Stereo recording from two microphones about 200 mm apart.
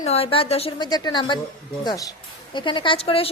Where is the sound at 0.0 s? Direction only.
30° left (ahead or behind).